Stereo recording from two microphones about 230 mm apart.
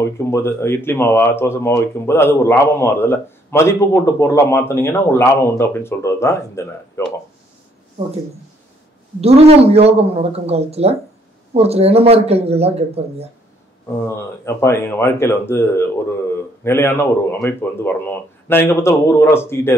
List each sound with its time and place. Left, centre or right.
0.2 s speech: centre
9.2 s speech: right
14.0 s speech: centre